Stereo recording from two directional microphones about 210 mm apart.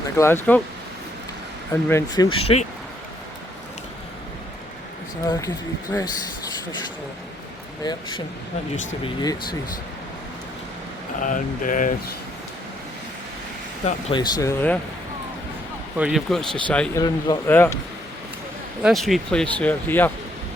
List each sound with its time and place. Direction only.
0.2 s speech: 10° left (ahead or behind)
1.7 s speech: 10° left (ahead or behind)
2.4 s speech: 30° left (ahead or behind)
5.2 s speech: 15° left (ahead or behind)
11.2 s speech: 40° left (ahead or behind)
14.1 s speech: 20° left (ahead or behind)
16.0 s speech: 5° right (ahead or behind)
17.0 s speech: 20° left (ahead or behind)
18.8 s speech: centre (ahead or behind)